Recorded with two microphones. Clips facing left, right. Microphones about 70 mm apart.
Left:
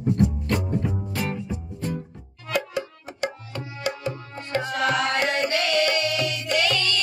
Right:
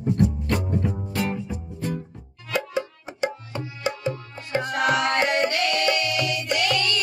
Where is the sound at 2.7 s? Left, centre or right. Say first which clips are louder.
Right 2 dB; right.